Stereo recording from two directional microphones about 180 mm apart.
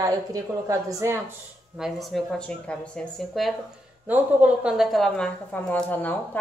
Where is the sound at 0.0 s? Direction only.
20° right (ahead or behind).